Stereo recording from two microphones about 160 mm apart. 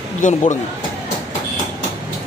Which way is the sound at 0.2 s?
50° left (ahead or behind).